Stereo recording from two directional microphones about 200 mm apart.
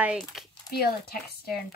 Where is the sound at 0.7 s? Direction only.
50° left (ahead or behind).